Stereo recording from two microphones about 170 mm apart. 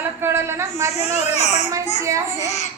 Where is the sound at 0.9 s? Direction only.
40° left (ahead or behind).